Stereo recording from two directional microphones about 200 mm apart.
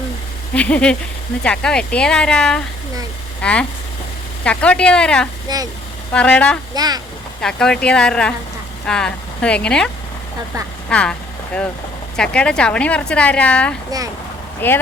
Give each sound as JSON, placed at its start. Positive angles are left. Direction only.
{"t": 0.5, "sound": "speech", "side_deg": 5}
{"t": 5.5, "sound": "speech", "side_deg": -20}
{"t": 6.1, "sound": "a woman's voice", "side_deg": 5}
{"t": 6.7, "sound": "speech", "side_deg": -20}
{"t": 7.4, "sound": "a woman's voice", "side_deg": 5}